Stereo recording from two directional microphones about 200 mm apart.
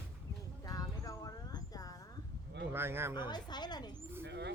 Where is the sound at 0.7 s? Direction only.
20° left (ahead or behind).